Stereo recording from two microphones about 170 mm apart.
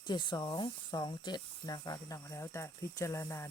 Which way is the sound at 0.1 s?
25° left (ahead or behind).